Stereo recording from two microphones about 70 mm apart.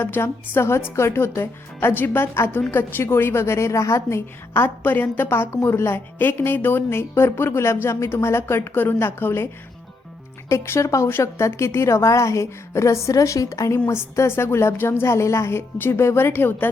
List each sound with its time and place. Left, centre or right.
0.0 s speech: left
10.5 s a woman's voice: left
13.9 s speech: left